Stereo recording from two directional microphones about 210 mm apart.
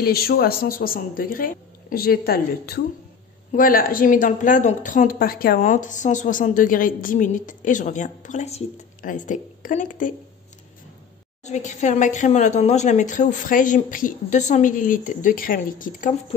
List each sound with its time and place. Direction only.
0.0 s a woman's voice: 45° left (ahead or behind)
11.4 s a woman's voice: 35° left (ahead or behind)